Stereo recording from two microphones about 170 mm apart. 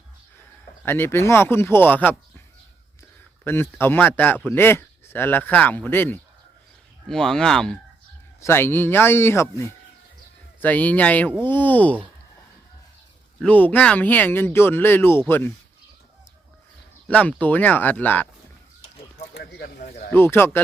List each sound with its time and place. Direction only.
0.9 s speech: 15° left (ahead or behind)
3.4 s speech: 15° left (ahead or behind)
8.4 s speech: 15° left (ahead or behind)
13.4 s speech: 10° left (ahead or behind)
17.1 s speech: 10° left (ahead or behind)
19.3 s a sound: 70° left (ahead or behind)
20.1 s speech: 15° left (ahead or behind)